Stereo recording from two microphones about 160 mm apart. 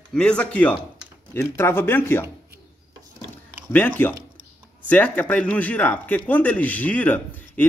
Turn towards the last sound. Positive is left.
turn(degrees=10)  # may be behind; listen again after turning